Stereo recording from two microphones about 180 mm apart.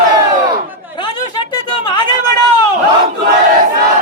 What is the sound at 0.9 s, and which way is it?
Chatter, 25° left (ahead or behind).